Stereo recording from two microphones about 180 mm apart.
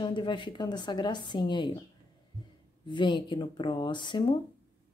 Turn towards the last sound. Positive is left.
turn(degrees=25)  # may be behind; listen again after turning